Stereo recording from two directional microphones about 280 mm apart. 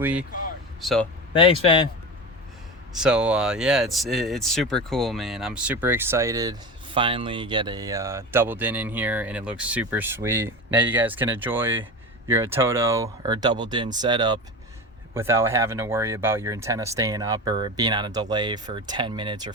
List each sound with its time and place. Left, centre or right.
0.0 s speech: centre
1.3 s speech: centre
2.9 s speech: centre